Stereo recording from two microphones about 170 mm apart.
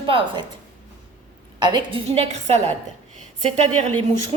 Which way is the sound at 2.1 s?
40° right (ahead or behind).